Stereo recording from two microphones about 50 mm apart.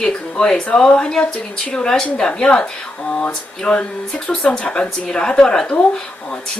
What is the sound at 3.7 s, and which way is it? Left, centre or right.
A woman's voice, centre.